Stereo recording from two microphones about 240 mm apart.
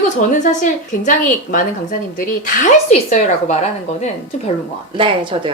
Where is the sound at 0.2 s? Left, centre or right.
Left.